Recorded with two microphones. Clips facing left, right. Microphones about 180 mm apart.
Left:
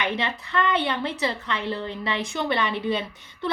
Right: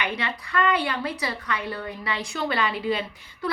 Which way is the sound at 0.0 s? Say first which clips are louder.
Left 2 dB; 25° left (ahead or behind).